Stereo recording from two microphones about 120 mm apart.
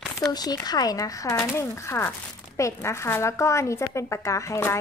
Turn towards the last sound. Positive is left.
turn(degrees=25)  # may be behind; listen again after turning